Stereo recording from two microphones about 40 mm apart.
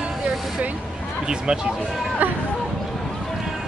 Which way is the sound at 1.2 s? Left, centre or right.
Right.